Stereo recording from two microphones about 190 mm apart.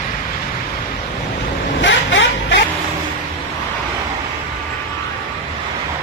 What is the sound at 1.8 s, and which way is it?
Vehicle, 75° left (ahead or behind).